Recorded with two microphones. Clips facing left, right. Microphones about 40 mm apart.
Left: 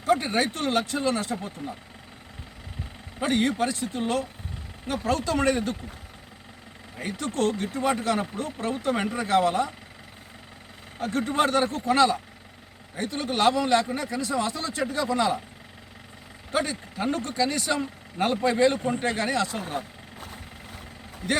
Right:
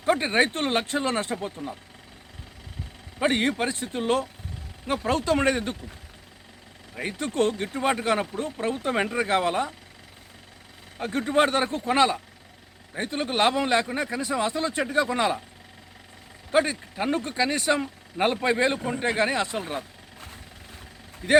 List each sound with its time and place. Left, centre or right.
0.0 s speech: right
3.2 s speech: right
6.9 s speech: right
11.3 s speech: right
16.5 s speech: right
21.2 s speech: centre